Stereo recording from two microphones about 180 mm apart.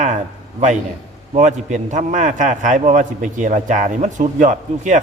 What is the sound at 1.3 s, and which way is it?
A man's voice, 40° right (ahead or behind).